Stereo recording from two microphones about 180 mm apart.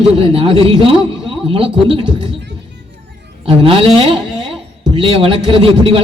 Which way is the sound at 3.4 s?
30° right (ahead or behind).